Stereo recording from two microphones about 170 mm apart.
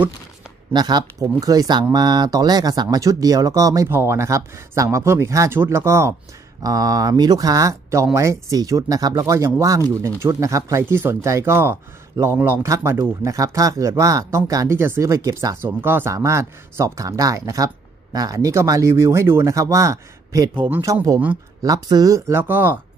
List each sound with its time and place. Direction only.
0.7 s speech: 25° right (ahead or behind)